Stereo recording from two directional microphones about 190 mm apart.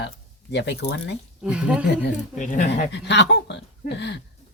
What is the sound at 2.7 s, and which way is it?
Speech, 65° left (ahead or behind).